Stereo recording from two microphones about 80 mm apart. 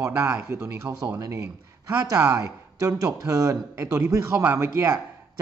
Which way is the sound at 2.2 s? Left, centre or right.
Right.